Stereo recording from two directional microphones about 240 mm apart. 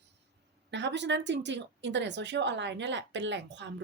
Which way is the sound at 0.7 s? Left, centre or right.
Right.